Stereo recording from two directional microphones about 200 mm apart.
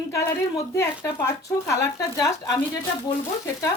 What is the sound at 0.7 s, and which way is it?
Speech, 15° left (ahead or behind).